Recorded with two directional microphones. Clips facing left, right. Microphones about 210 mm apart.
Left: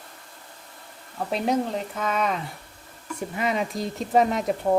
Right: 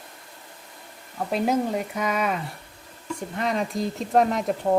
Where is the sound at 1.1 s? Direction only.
5° right (ahead or behind).